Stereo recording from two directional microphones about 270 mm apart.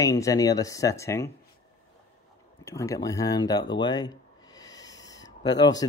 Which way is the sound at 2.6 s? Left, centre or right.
Centre.